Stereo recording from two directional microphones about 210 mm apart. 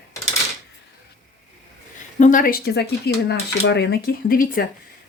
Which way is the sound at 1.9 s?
40° left (ahead or behind).